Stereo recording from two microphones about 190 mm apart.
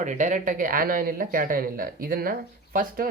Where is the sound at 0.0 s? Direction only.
40° right (ahead or behind).